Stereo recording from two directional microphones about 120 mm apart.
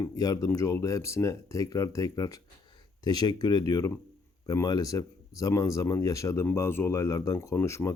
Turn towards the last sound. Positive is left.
turn(degrees=25)  # may be behind; listen again after turning